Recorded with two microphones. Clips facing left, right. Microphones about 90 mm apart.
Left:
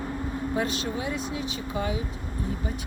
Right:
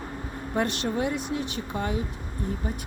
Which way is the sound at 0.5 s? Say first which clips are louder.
Right 4 dB; 60° right (ahead or behind).